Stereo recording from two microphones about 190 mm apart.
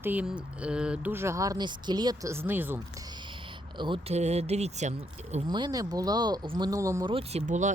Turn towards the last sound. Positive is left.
turn(degrees=-40)  # may be behind; listen again after turning